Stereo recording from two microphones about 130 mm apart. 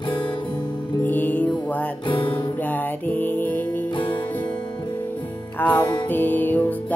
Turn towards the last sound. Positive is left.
turn(degrees=15)  # may be behind; listen again after turning